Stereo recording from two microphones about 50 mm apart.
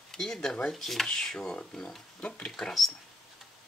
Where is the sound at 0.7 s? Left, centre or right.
Centre.